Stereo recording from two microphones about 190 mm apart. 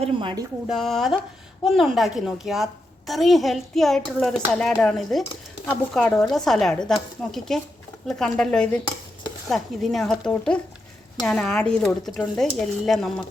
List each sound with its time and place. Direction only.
0.0 s speech: 25° right (ahead or behind)
0.7 s a child's voice: centre (ahead or behind)